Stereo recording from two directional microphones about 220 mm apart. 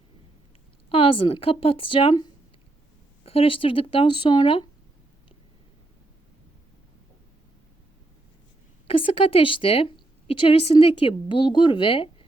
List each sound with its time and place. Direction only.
0.9 s a woman's voice: 25° left (ahead or behind)
8.9 s a woman's voice: 25° left (ahead or behind)